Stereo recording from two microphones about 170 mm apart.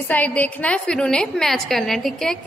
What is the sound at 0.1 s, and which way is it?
A woman's voice, 10° left (ahead or behind).